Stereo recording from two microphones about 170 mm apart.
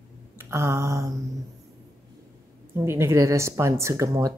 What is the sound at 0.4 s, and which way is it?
Mantra, 15° right (ahead or behind).